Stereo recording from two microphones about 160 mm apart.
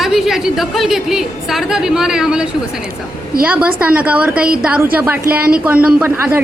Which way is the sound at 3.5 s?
10° right (ahead or behind).